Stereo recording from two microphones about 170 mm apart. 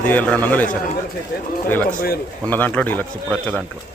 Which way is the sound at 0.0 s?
10° left (ahead or behind).